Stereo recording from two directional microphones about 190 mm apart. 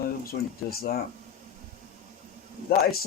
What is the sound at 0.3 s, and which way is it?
Speech, 50° left (ahead or behind).